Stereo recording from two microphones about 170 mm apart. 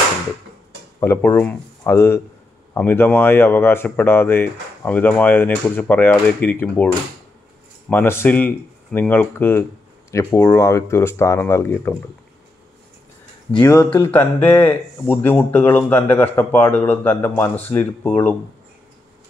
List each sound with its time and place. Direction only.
0.9 s speech: 15° left (ahead or behind)
7.9 s speech: 15° left (ahead or behind)
13.6 s speech: 15° left (ahead or behind)